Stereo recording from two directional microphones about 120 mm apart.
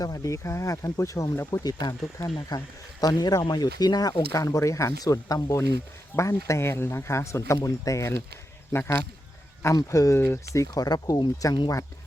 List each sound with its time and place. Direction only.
0.0 s speech: 30° left (ahead or behind)